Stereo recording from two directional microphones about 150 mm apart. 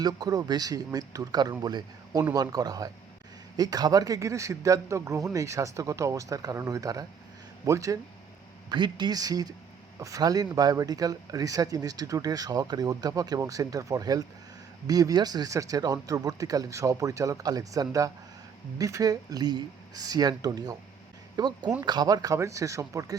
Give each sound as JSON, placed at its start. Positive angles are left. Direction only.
{"t": 0.0, "sound": "speech", "side_deg": -25}